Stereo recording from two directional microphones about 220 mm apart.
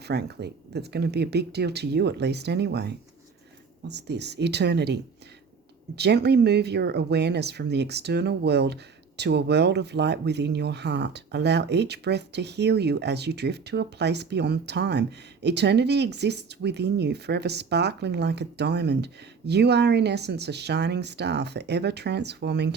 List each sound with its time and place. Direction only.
0.1 s speech: 50° right (ahead or behind)
6.0 s speech: 50° right (ahead or behind)